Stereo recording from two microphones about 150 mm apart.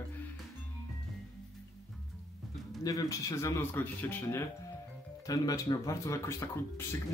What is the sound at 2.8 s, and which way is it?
Speech, 20° left (ahead or behind).